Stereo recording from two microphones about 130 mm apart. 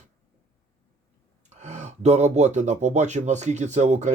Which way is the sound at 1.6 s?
60° right (ahead or behind).